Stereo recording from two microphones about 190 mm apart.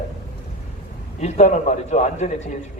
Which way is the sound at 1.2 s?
40° left (ahead or behind).